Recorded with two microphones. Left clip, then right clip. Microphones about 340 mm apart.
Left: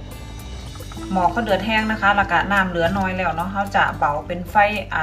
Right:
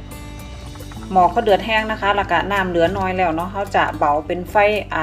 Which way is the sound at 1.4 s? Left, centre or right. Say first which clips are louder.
Right 4 dB; right.